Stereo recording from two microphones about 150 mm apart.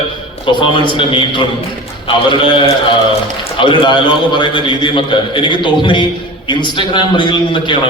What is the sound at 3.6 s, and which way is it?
A man's voice, 30° left (ahead or behind).